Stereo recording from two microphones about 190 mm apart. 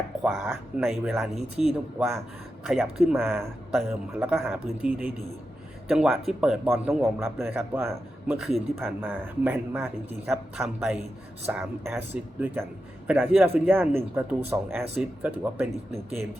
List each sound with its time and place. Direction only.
0.2 s speech: 10° right (ahead or behind)
8.4 s speech: centre (ahead or behind)